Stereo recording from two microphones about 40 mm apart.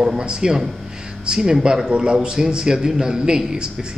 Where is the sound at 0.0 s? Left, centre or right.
Centre.